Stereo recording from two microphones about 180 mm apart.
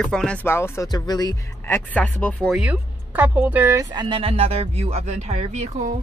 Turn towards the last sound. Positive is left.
turn(degrees=-40)  # may be behind; listen again after turning